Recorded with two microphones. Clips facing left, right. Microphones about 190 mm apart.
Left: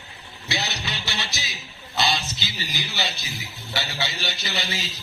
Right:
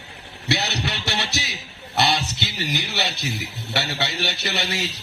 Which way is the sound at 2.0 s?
65° right (ahead or behind).